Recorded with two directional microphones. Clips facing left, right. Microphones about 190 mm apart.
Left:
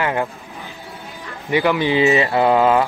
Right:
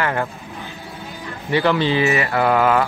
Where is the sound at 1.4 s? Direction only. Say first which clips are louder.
Even; 15° left (ahead or behind).